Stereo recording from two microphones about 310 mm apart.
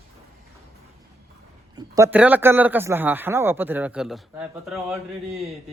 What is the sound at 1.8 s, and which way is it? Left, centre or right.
A man's voice, centre.